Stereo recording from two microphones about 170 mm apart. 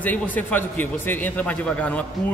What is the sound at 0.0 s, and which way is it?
A man's voice, 10° left (ahead or behind).